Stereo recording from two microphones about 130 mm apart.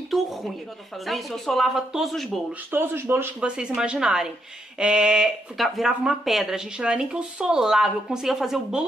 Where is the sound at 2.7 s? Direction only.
15° right (ahead or behind).